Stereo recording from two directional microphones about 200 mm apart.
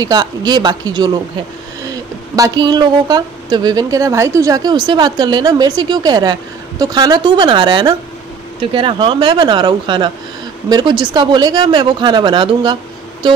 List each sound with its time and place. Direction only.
0.0 s speech: 20° right (ahead or behind)
2.3 s speech: 20° right (ahead or behind)